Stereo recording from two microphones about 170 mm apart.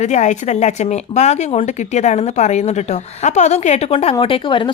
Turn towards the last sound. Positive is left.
turn(degrees=30)  # may be behind; listen again after turning